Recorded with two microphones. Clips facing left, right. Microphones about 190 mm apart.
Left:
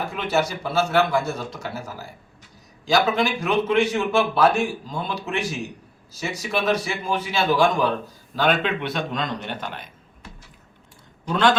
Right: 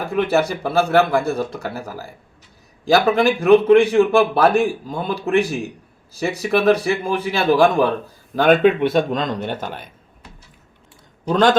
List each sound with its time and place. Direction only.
0.2 s a man's voice: 55° right (ahead or behind)
2.8 s a man's voice: 55° right (ahead or behind)